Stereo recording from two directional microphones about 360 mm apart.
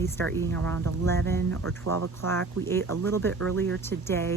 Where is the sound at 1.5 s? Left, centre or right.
Right.